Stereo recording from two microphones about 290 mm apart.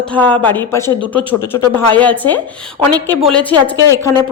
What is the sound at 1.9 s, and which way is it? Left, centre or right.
Speech, centre.